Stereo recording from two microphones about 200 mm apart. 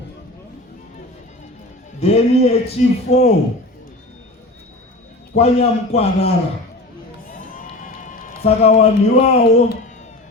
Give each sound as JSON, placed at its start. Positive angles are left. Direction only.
{"t": 2.0, "sound": "a man's voice", "side_deg": 30}
{"t": 5.4, "sound": "a man's voice", "side_deg": 30}
{"t": 7.3, "sound": "music", "side_deg": 45}